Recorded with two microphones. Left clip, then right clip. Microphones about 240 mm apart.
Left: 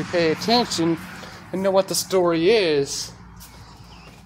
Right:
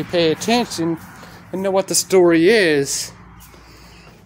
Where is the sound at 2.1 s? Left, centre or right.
Right.